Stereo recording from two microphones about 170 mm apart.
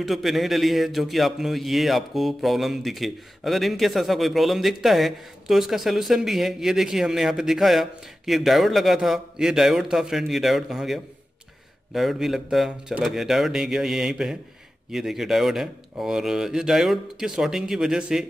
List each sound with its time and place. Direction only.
0.0 s a man's voice: centre (ahead or behind)